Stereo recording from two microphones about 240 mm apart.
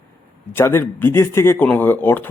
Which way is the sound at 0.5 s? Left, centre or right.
Centre.